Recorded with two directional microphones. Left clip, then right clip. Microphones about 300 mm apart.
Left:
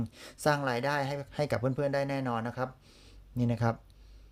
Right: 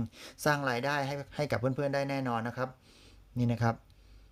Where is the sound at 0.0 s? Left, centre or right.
Centre.